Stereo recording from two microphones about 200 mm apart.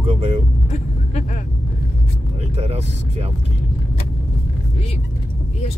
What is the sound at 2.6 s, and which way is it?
Speech, 30° right (ahead or behind).